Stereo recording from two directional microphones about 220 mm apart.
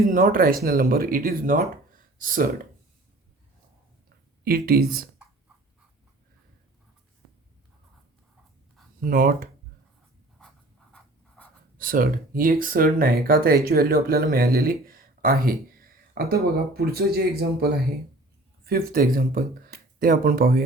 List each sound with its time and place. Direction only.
0.0 s speech: 40° right (ahead or behind)
1.9 s a sound: 40° right (ahead or behind)
4.4 s speech: 45° right (ahead or behind)
9.0 s speech: 40° right (ahead or behind)
11.8 s speech: 40° right (ahead or behind)